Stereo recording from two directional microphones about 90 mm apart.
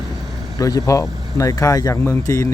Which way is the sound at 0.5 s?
40° left (ahead or behind).